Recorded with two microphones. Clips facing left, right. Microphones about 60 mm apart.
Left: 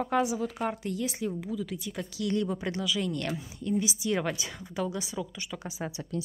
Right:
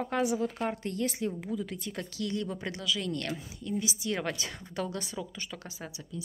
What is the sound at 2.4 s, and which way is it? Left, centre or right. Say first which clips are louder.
Speech: left 5 dB; centre.